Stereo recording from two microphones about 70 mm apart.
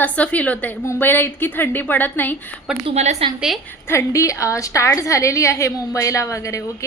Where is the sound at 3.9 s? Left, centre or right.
Left.